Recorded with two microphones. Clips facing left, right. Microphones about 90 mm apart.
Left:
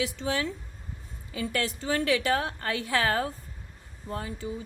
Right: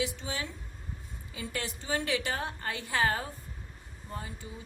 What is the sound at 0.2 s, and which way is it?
A woman's voice, 65° left (ahead or behind).